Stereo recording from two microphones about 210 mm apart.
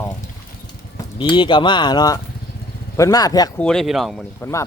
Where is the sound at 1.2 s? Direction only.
25° left (ahead or behind).